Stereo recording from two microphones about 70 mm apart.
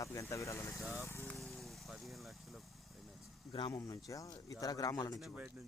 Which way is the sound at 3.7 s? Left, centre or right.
Left.